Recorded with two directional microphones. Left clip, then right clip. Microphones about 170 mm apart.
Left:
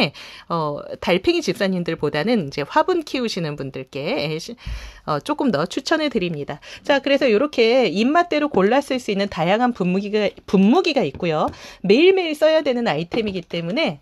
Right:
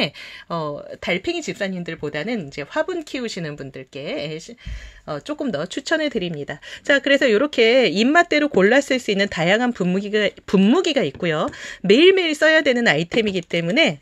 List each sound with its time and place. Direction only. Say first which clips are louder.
0.0 s speech: left 2 dB; 20° left (ahead or behind)
1.0 s speech: left 5 dB; 35° left (ahead or behind)
5.8 s speech: left 1 dB; 15° left (ahead or behind)
6.9 s speech: right 1 dB; 5° right (ahead or behind); by 13.9 s 20° right (ahead or behind)